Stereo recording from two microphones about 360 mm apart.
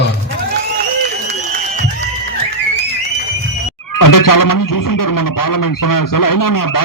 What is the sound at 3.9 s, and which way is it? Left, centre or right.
Speech, left.